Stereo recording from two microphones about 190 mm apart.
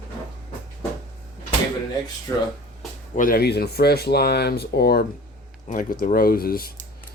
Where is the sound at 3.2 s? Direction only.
50° left (ahead or behind).